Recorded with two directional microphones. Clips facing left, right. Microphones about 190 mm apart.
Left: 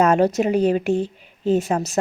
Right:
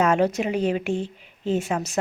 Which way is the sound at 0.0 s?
40° left (ahead or behind).